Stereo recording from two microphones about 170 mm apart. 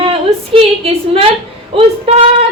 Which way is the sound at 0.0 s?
35° right (ahead or behind).